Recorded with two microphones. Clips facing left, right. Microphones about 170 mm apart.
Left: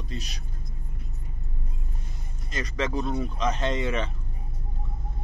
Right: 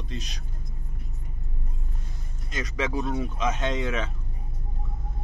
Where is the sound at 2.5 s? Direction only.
5° right (ahead or behind).